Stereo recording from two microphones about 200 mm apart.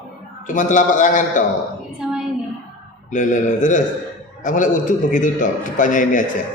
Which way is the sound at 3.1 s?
40° left (ahead or behind).